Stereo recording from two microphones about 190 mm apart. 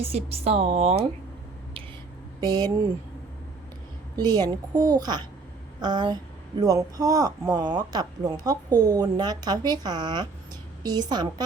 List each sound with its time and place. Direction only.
0.0 s a woman's voice: 30° right (ahead or behind)
2.4 s speech: 20° right (ahead or behind)
4.2 s speech: 20° right (ahead or behind)